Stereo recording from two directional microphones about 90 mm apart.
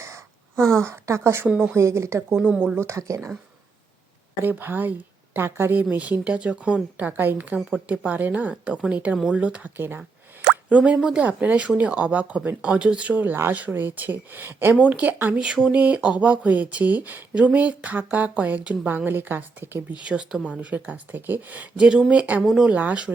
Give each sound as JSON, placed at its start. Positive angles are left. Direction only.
{"t": 0.0, "sound": "a sound", "side_deg": -30}
{"t": 0.6, "sound": "speech", "side_deg": 5}
{"t": 0.9, "sound": "a woman's voice", "side_deg": -30}
{"t": 1.5, "sound": "speech", "side_deg": -10}
{"t": 1.7, "sound": "speech", "side_deg": -35}
{"t": 4.4, "sound": "a woman's voice", "side_deg": -25}
{"t": 10.4, "sound": "a woman's voice", "side_deg": -10}
{"t": 20.0, "sound": "speech", "side_deg": -10}